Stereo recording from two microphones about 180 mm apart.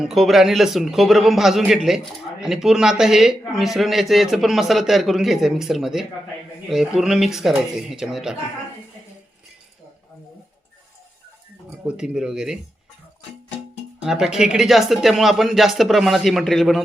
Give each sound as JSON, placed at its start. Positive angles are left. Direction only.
{"t": 0.0, "sound": "speech", "side_deg": 0}
{"t": 11.9, "sound": "speech", "side_deg": -5}
{"t": 14.0, "sound": "speech", "side_deg": -5}